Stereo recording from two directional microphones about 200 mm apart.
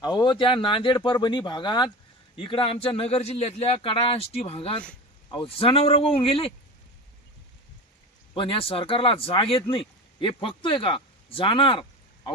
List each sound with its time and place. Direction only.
0.0 s speech: 20° left (ahead or behind)
8.3 s speech: 25° left (ahead or behind)